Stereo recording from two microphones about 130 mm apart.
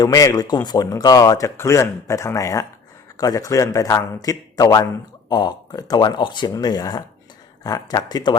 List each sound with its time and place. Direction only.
0.0 s speech: 25° left (ahead or behind)